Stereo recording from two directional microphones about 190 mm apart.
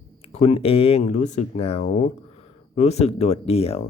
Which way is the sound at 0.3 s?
30° left (ahead or behind).